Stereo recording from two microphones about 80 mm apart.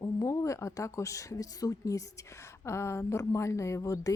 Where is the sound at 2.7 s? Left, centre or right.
Left.